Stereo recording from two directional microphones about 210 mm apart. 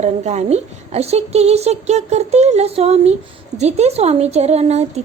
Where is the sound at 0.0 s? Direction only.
30° right (ahead or behind).